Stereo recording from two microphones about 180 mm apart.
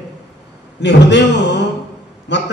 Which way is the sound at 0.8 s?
75° left (ahead or behind).